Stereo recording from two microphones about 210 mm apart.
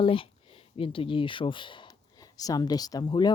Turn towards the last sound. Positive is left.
turn(degrees=20)  # may be behind; listen again after turning